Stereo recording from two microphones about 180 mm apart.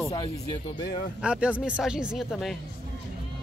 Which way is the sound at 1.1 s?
5° right (ahead or behind).